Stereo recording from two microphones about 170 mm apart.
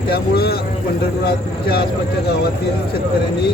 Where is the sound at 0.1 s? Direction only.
65° left (ahead or behind).